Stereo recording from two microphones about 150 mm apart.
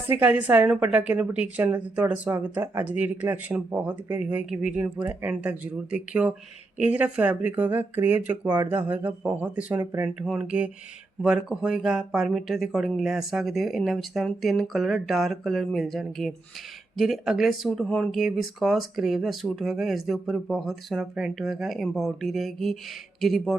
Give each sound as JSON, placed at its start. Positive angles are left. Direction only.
{"t": 0.1, "sound": "a woman's voice", "side_deg": -10}
{"t": 8.4, "sound": "speech", "side_deg": -25}
{"t": 8.7, "sound": "a woman's voice", "side_deg": -10}